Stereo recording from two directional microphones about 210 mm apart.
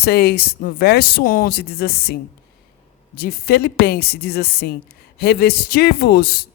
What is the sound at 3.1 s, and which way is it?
A man's voice, 45° left (ahead or behind).